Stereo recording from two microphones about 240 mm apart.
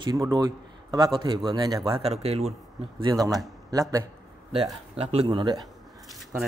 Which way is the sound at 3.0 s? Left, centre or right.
Centre.